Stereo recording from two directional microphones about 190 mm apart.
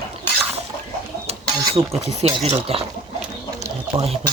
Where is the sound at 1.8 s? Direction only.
30° right (ahead or behind).